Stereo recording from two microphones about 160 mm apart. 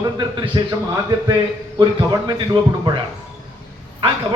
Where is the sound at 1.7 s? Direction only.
25° right (ahead or behind).